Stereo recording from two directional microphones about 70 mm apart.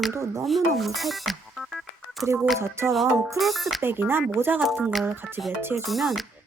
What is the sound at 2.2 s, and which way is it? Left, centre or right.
Speech, right.